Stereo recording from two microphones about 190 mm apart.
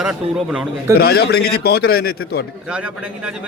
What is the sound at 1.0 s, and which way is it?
A man's voice, 55° left (ahead or behind).